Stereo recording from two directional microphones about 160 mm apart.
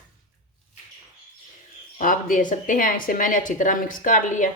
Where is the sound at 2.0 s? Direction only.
55° left (ahead or behind).